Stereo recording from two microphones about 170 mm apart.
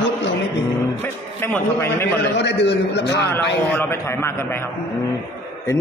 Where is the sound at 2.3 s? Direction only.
90° left.